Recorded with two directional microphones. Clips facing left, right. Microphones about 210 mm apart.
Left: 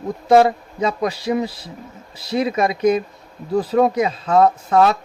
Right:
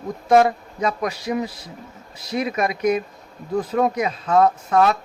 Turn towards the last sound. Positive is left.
turn(degrees=30)  # may be behind; listen again after turning